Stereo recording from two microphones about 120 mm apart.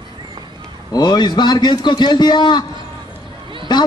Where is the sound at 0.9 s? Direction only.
35° left (ahead or behind).